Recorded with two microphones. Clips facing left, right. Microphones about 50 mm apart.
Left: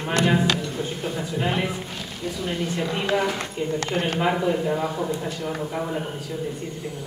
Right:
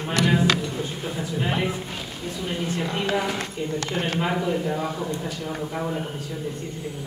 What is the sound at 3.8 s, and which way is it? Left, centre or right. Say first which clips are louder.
Speech: left 1 dB; left.